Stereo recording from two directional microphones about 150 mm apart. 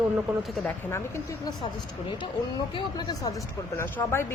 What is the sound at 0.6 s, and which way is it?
Speech, 15° left (ahead or behind).